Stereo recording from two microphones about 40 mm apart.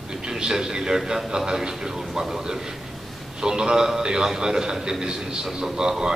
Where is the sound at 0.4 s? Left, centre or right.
Centre.